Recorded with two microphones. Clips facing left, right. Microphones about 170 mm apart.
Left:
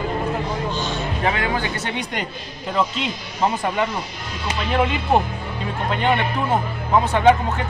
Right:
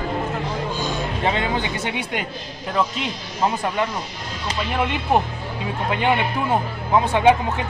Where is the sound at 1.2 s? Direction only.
25° right (ahead or behind).